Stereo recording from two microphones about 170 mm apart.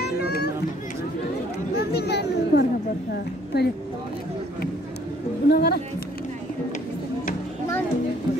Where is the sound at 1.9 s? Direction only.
70° left (ahead or behind).